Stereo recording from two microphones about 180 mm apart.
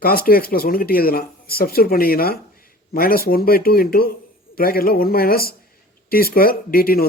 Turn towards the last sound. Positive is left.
turn(degrees=55)  # may be behind; listen again after turning